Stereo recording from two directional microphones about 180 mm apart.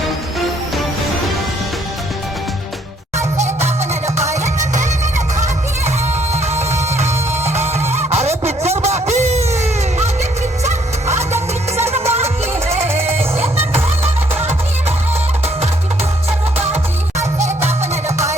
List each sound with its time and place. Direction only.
3.2 s music: 40° right (ahead or behind)
10.6 s music: 40° right (ahead or behind)
16.6 s music: 35° right (ahead or behind)